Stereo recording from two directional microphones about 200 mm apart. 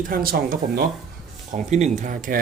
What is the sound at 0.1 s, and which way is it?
Speech, 45° right (ahead or behind).